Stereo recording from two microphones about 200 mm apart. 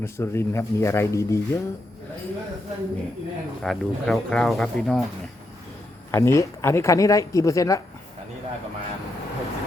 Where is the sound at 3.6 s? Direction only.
5° left (ahead or behind).